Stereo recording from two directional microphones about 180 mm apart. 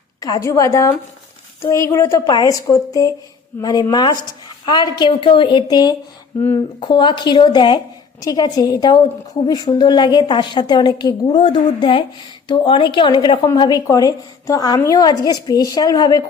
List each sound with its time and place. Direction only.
0.2 s a woman's voice: 20° left (ahead or behind)